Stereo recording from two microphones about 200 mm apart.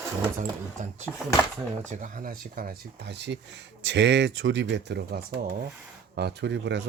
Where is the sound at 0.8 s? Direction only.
35° right (ahead or behind).